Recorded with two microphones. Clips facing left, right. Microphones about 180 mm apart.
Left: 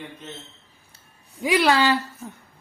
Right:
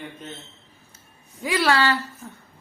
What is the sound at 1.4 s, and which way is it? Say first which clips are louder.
Speech: left 2 dB; 15° left (ahead or behind).